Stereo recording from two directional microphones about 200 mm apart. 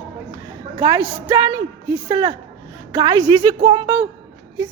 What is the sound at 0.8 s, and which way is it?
A woman's voice, 20° right (ahead or behind).